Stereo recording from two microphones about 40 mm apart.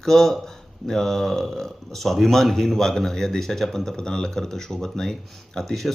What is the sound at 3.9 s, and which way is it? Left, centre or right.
Speech, centre.